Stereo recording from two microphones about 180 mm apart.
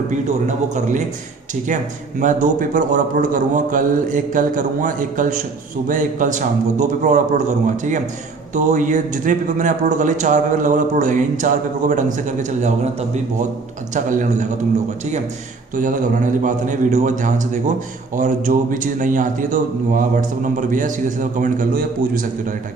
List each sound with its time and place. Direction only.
0.4 s a man's voice: 40° right (ahead or behind)
2.2 s a man's voice: 45° right (ahead or behind)
8.5 s a man's voice: 45° right (ahead or behind)
15.7 s a man's voice: 45° right (ahead or behind)